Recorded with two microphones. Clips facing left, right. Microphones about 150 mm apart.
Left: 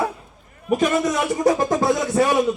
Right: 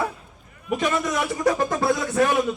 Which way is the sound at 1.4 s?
40° left (ahead or behind).